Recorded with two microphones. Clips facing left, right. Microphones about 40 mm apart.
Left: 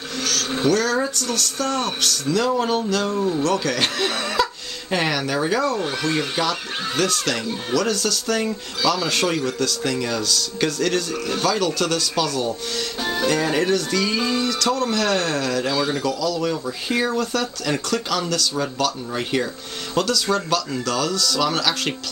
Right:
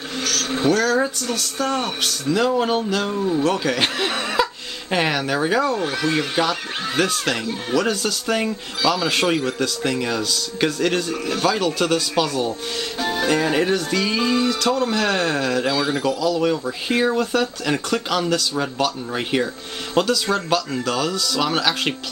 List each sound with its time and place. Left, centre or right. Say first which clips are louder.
0.2 s vehicle: right 1 dB; centre
0.8 s speech: right 2 dB; centre
13.0 s music: right 1 dB; centre
13.3 s speech: right 1 dB; centre
16.0 s speech: right 3 dB; centre